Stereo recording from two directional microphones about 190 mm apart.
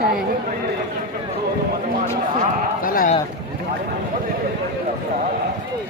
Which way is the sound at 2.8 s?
45° left (ahead or behind).